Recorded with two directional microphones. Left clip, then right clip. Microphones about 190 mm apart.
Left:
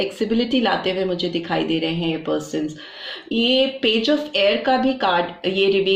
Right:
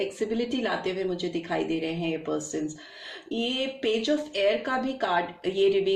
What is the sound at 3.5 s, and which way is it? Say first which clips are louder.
Speech: left 9 dB; 25° left (ahead or behind).